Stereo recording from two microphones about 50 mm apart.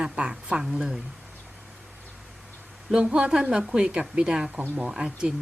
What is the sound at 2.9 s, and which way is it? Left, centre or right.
Speech, centre.